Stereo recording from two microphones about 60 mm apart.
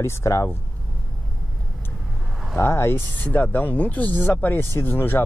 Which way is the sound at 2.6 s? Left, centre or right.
Left.